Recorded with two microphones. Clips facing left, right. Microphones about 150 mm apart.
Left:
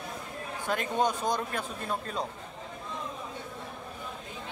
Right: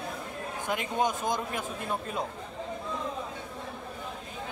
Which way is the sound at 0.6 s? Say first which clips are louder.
Left 1 dB; 15° right (ahead or behind).